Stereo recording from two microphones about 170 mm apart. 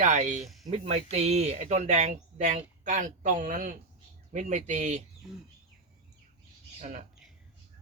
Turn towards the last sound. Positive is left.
turn(degrees=-50)  # may be behind; listen again after turning